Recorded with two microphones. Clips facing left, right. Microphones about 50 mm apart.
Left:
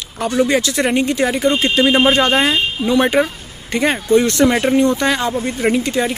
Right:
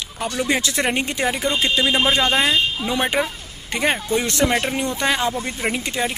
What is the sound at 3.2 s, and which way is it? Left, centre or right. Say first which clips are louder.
Speech: left 6 dB; centre.